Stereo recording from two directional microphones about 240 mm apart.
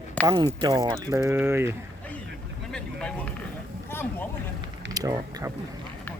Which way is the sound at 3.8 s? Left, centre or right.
Centre.